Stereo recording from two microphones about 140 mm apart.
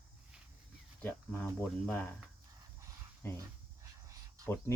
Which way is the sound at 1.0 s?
15° left (ahead or behind).